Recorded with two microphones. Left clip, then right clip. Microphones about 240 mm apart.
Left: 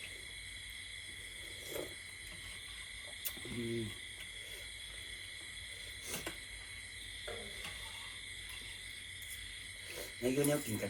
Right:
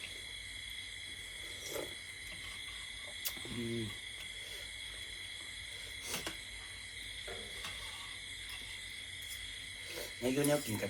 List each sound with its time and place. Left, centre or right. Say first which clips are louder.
10.2 s speech: right 1 dB; centre